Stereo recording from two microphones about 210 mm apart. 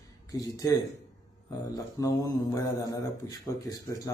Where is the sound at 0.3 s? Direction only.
15° left (ahead or behind).